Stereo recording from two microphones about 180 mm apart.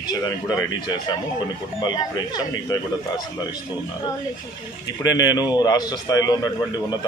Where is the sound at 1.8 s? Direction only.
20° left (ahead or behind).